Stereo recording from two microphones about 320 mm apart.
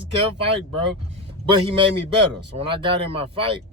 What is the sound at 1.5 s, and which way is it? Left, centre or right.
Speech, centre.